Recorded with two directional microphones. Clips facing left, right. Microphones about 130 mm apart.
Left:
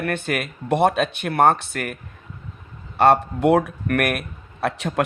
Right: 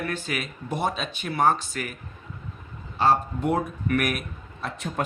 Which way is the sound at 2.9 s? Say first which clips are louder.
Left 6 dB; 65° left (ahead or behind).